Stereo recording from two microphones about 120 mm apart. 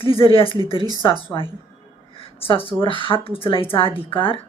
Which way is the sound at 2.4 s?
50° left (ahead or behind).